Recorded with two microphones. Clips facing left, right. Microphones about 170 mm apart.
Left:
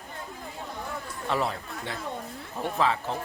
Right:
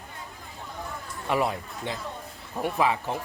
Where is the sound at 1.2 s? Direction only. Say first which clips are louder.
Right 3 dB; 15° right (ahead or behind).